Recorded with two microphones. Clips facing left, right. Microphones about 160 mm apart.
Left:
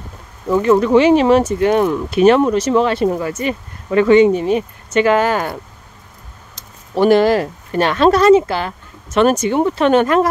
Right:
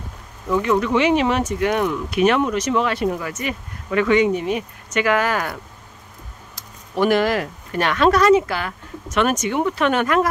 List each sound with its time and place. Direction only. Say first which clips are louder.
0.5 s speech: left 6 dB; 35° left (ahead or behind)